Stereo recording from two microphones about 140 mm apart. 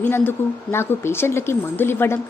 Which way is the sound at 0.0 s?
15° left (ahead or behind).